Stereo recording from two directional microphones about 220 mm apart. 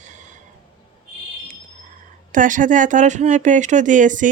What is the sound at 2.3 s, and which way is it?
Speech, 35° right (ahead or behind).